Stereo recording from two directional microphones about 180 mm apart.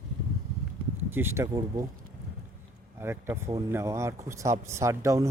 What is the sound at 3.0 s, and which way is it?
Speech, 15° right (ahead or behind).